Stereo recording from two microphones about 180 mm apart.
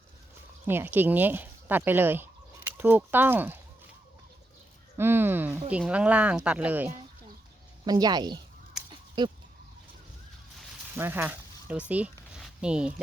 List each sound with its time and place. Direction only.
0.7 s speech: 10° right (ahead or behind)
4.9 s speech: 10° right (ahead or behind)
7.9 s speech: 20° right (ahead or behind)
8.9 s a sound: 25° right (ahead or behind)
10.9 s speech: 10° right (ahead or behind)